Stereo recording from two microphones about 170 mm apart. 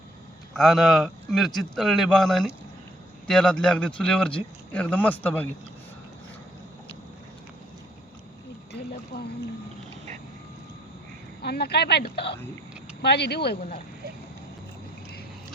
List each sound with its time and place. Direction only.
0.5 s a man's voice: centre (ahead or behind)
8.7 s a sound: 70° left (ahead or behind)
11.4 s speech: 75° left (ahead or behind)